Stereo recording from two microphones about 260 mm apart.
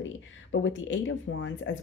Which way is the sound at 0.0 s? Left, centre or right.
Left.